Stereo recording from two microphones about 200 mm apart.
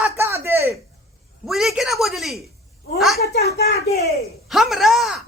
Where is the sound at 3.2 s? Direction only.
50° left (ahead or behind).